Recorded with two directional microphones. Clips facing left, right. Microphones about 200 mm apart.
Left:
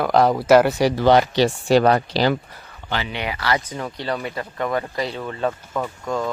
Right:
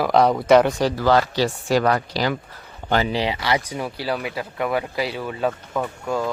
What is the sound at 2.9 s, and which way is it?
Speech, 40° right (ahead or behind).